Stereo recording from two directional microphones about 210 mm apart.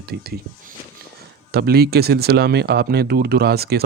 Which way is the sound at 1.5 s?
50° right (ahead or behind).